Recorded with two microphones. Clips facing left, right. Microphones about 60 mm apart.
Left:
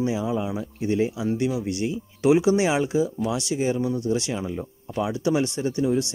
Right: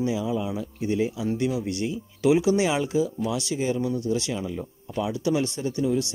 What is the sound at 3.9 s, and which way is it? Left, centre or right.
Speech, left.